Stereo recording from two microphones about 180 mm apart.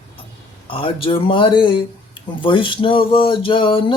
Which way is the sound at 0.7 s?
30° left (ahead or behind).